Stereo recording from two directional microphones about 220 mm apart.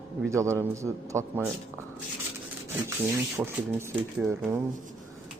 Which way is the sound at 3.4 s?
10° right (ahead or behind).